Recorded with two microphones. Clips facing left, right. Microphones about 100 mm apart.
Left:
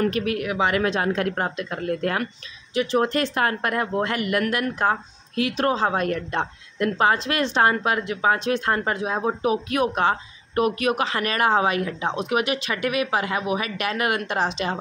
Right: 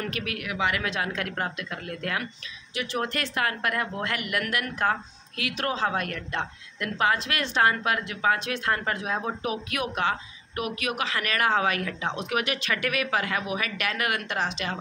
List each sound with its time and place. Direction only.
0.0 s speech: 35° left (ahead or behind)